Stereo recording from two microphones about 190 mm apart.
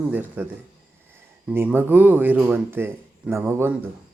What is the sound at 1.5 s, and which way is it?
Speech, 10° right (ahead or behind).